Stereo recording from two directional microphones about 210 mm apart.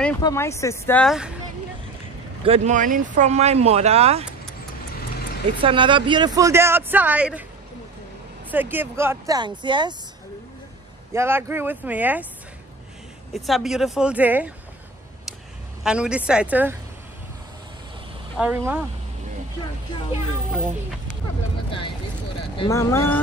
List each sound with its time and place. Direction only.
0.2 s speech: 15° left (ahead or behind)
2.4 s speech: 30° right (ahead or behind)
5.6 s speech: 25° right (ahead or behind); by 7.4 s 5° right (ahead or behind)
8.5 s speech: 10° right (ahead or behind)
11.1 s speech: 10° right (ahead or behind)
13.3 s speech: centre (ahead or behind)
15.8 s speech: 5° right (ahead or behind)
18.4 s speech: 10° right (ahead or behind)
21.6 s vehicle: 25° left (ahead or behind)
22.6 s speech: 15° left (ahead or behind)